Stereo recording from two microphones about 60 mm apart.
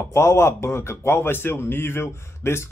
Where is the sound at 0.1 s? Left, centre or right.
Left.